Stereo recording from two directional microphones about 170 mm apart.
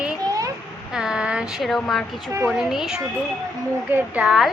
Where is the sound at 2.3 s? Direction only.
15° right (ahead or behind).